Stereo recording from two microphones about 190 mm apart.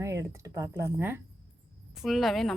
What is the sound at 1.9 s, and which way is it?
Speech, centre (ahead or behind).